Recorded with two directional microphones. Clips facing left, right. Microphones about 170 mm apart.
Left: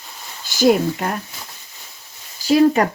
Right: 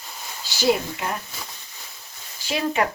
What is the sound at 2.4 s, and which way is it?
Speech, 40° left (ahead or behind).